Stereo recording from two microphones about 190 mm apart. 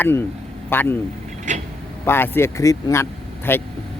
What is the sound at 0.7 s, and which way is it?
Speech, 10° left (ahead or behind).